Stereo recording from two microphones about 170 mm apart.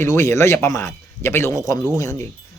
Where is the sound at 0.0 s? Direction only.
15° left (ahead or behind).